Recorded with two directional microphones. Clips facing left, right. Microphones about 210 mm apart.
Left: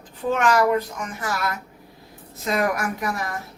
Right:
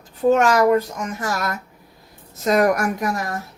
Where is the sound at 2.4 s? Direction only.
45° right (ahead or behind).